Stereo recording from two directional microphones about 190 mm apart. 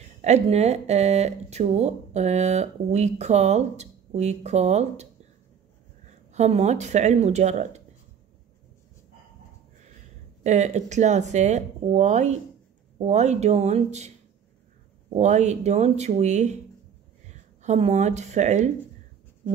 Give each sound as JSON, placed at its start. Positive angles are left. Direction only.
{"t": 0.2, "sound": "speech", "side_deg": -35}
{"t": 6.0, "sound": "speech", "side_deg": -35}
{"t": 10.4, "sound": "speech", "side_deg": -35}
{"t": 15.1, "sound": "speech", "side_deg": -35}